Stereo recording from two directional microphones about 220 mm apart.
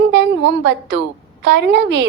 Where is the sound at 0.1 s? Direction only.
50° right (ahead or behind).